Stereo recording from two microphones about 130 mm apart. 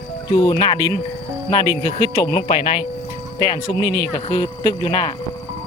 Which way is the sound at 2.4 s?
45° left (ahead or behind).